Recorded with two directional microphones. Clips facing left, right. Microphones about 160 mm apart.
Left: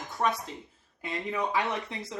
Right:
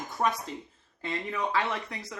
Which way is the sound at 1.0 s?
15° left (ahead or behind).